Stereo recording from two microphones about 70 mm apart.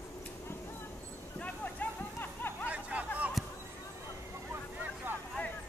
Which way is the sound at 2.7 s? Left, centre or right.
Centre.